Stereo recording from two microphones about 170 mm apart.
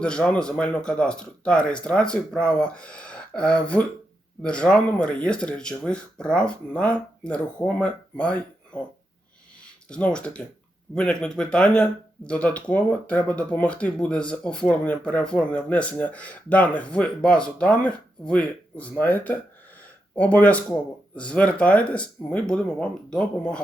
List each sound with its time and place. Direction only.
0.0 s speech: 5° left (ahead or behind)
9.9 s speech: 5° left (ahead or behind)